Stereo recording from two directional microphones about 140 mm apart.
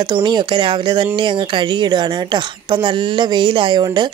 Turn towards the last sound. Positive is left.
turn(degrees=-30)  # may be behind; listen again after turning